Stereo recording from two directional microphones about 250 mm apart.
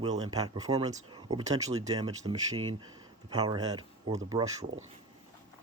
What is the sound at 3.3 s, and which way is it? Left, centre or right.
Speech, centre.